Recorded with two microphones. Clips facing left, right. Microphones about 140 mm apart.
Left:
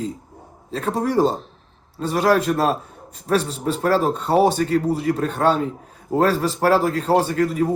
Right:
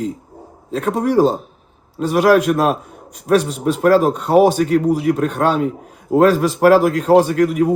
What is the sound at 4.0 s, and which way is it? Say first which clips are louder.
Speech: right 5 dB; 15° right (ahead or behind).